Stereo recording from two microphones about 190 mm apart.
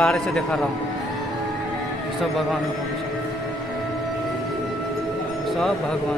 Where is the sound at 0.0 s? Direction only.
5° left (ahead or behind).